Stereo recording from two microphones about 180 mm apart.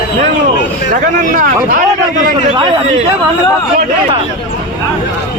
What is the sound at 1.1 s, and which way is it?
Speech, 50° right (ahead or behind).